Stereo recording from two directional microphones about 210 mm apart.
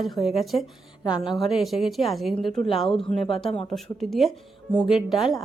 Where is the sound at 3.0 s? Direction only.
25° left (ahead or behind).